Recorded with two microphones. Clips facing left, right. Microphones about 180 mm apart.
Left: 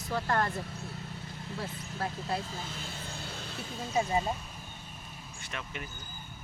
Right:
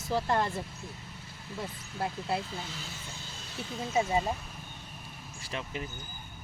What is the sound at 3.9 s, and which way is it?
Speech, 15° right (ahead or behind).